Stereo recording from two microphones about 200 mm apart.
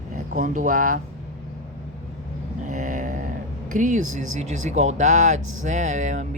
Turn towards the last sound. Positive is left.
turn(degrees=-35)  # may be behind; listen again after turning